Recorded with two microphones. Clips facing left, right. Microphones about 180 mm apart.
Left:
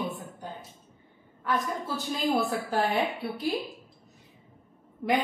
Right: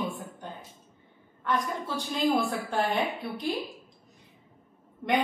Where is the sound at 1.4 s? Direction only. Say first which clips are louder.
Even; 5° left (ahead or behind).